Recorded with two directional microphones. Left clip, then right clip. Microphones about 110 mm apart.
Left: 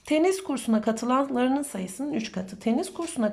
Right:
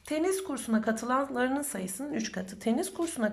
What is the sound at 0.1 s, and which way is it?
A woman's voice, 15° left (ahead or behind).